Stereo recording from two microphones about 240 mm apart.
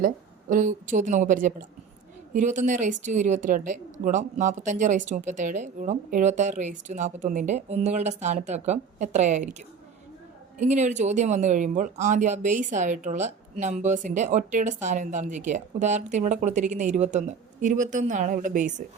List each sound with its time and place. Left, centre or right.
0.5 s speech: right